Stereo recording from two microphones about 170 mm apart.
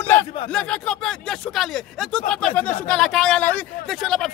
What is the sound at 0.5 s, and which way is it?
Speech, 5° left (ahead or behind).